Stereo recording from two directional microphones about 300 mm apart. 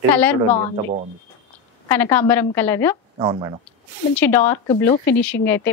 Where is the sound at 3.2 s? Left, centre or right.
Centre.